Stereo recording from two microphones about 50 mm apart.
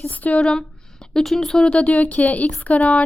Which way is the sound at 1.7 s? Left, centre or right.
Left.